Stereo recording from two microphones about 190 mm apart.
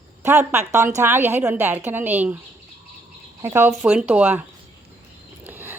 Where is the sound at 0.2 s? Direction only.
15° right (ahead or behind).